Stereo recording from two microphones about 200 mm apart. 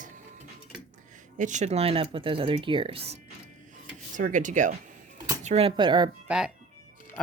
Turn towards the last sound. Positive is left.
turn(degrees=-5)  # may be behind; listen again after turning